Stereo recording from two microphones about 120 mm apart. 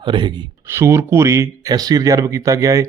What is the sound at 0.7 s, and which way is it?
Speech, 20° right (ahead or behind).